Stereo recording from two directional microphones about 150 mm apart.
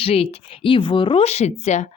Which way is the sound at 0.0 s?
40° left (ahead or behind).